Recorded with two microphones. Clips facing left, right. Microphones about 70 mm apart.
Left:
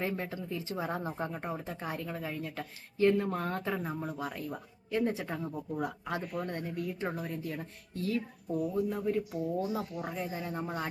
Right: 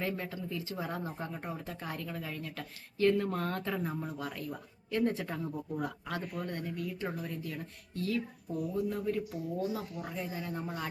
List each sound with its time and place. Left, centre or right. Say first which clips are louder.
0.0 s speech: left 1 dB; centre
6.1 s speech: left 2 dB; left